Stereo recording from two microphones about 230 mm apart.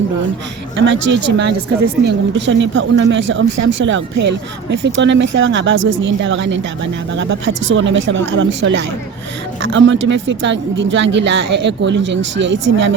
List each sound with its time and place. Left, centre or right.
0.8 s speech: right